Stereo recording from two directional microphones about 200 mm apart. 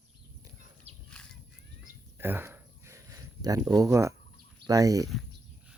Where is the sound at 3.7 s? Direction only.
15° right (ahead or behind).